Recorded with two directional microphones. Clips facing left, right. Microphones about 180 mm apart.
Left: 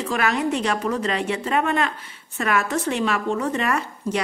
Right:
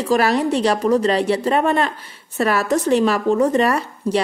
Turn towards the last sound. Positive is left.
turn(degrees=-35)  # may be behind; listen again after turning